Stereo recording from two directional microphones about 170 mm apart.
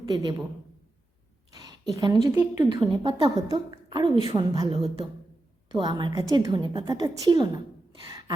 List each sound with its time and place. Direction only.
0.1 s a woman's voice: 25° right (ahead or behind)
1.9 s a woman's voice: 25° right (ahead or behind)
2.4 s a woman's voice: 10° right (ahead or behind)
2.8 s a woman's voice: 30° right (ahead or behind)